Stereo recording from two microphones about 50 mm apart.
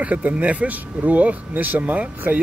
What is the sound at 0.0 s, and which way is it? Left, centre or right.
Speech, right.